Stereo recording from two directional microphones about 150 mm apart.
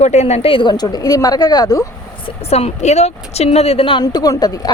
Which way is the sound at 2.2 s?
40° left (ahead or behind).